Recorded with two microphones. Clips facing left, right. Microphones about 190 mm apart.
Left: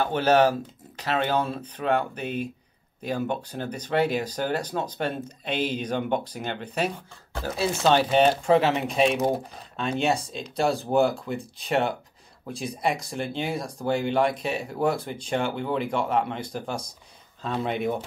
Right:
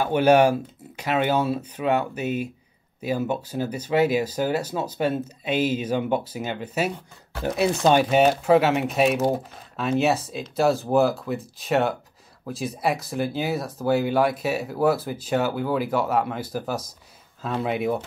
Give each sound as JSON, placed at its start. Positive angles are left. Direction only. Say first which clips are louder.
{"t": 0.0, "sound": "speech", "louder": "right 3 dB", "side_deg": -10}
{"t": 7.4, "sound": "speech", "louder": "right 3 dB", "side_deg": -20}